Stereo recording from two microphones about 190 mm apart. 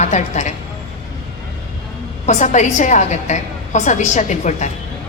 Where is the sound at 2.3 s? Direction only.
40° left (ahead or behind).